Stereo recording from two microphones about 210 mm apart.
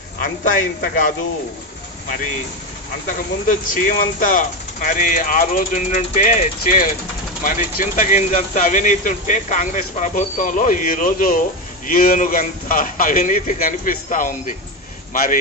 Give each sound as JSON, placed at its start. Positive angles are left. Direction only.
{"t": 0.2, "sound": "speech", "side_deg": 40}
{"t": 3.1, "sound": "speech", "side_deg": 40}